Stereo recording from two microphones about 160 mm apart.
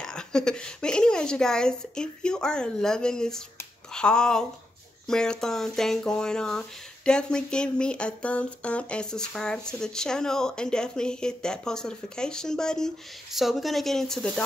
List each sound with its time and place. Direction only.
0.0 s speech: 5° left (ahead or behind)